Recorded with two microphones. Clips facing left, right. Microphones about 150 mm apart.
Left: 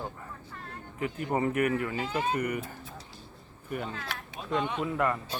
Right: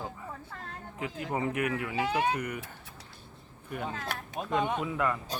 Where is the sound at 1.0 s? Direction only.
90° right.